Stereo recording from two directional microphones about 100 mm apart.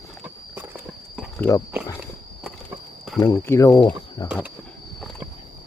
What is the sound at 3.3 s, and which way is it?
Speech, 30° left (ahead or behind).